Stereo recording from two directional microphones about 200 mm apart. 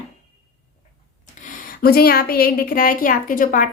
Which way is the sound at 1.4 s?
45° left (ahead or behind).